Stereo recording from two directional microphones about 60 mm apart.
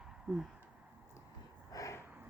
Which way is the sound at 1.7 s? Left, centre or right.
Left.